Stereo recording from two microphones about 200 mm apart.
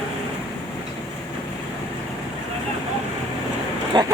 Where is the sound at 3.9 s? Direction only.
20° right (ahead or behind).